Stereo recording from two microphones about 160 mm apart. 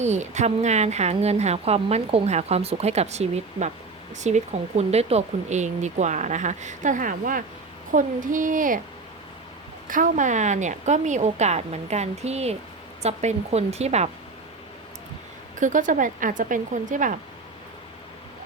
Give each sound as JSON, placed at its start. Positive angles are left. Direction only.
{"t": 0.0, "sound": "speech", "side_deg": -45}
{"t": 9.8, "sound": "speech", "side_deg": -55}
{"t": 15.5, "sound": "speech", "side_deg": -55}